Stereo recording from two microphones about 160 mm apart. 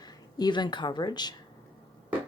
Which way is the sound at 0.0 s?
25° left (ahead or behind).